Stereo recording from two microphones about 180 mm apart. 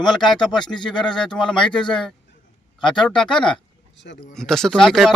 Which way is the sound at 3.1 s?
5° left (ahead or behind).